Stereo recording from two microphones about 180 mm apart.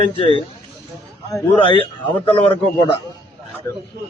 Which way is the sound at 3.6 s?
15° left (ahead or behind).